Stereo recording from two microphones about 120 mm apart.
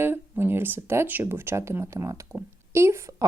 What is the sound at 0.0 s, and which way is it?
A woman's voice, 20° right (ahead or behind).